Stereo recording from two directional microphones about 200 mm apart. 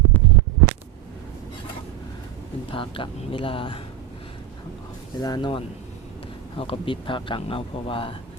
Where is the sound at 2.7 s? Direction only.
25° left (ahead or behind).